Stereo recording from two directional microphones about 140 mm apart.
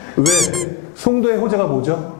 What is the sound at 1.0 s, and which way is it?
Speech, 15° left (ahead or behind).